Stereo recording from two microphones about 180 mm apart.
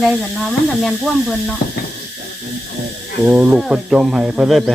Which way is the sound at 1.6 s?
50° left (ahead or behind).